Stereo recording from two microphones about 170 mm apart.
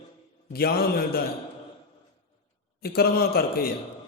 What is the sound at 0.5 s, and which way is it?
Speech, 65° left (ahead or behind).